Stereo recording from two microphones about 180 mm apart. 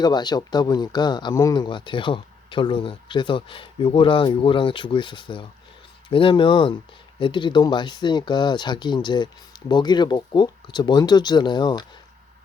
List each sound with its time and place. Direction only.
0.0 s speech: 25° left (ahead or behind)